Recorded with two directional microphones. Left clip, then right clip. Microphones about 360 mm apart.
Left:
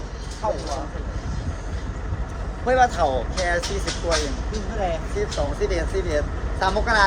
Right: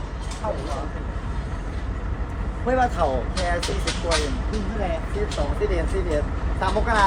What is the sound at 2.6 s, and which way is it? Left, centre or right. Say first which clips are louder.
Speech: left 3 dB; left.